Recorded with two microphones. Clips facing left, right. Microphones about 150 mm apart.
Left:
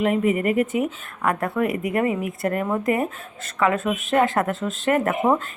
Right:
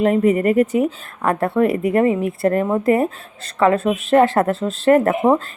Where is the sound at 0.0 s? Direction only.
35° right (ahead or behind).